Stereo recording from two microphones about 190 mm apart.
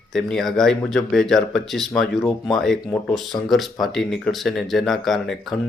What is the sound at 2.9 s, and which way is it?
Speech, 20° left (ahead or behind).